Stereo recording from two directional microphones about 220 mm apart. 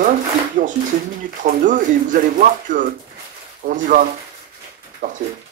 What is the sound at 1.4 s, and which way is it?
Speech, 35° right (ahead or behind).